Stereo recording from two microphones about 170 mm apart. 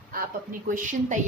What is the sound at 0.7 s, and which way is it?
Speech, 50° right (ahead or behind).